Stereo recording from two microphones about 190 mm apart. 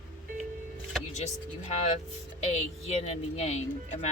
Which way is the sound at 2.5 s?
35° left (ahead or behind).